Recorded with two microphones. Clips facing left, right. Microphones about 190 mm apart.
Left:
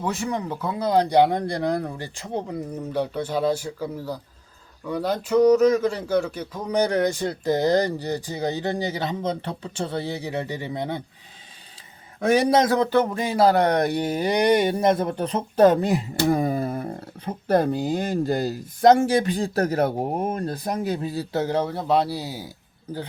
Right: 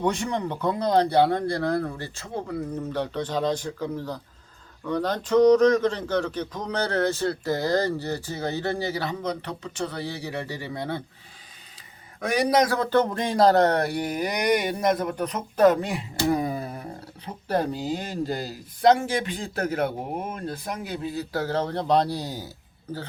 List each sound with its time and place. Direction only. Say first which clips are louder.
0.0 s speech: right 1 dB; 5° left (ahead or behind)
12.2 s speech: left 3 dB; 25° left (ahead or behind)
16.1 s music: even; 50° left (ahead or behind)
17.2 s speech: left 5 dB; 45° left (ahead or behind)
21.3 s speech: left 3 dB; 15° left (ahead or behind)